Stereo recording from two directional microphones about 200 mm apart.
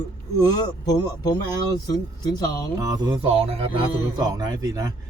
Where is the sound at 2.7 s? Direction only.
20° right (ahead or behind).